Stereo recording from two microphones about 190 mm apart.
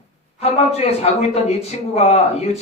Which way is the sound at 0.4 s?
35° left (ahead or behind).